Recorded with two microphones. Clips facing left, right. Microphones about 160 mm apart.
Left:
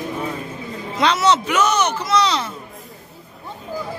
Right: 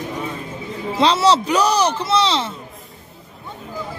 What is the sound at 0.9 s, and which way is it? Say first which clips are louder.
Speech: right 2 dB; 30° right (ahead or behind).